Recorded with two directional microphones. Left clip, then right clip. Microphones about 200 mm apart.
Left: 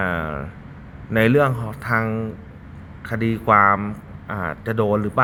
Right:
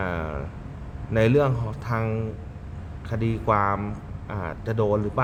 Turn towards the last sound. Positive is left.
turn(degrees=20)  # may be behind; listen again after turning